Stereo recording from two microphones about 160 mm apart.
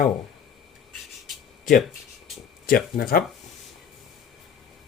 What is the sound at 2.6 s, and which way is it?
Speech, 65° left (ahead or behind).